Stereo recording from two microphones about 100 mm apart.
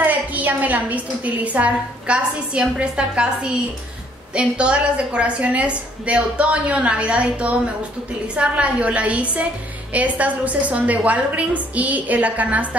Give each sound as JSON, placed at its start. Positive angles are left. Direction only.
{"t": 0.0, "sound": "a woman's voice", "side_deg": -15}
{"t": 4.3, "sound": "a woman's voice", "side_deg": -10}